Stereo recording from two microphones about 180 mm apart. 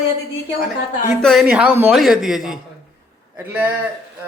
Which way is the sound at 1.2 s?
Centre (ahead or behind).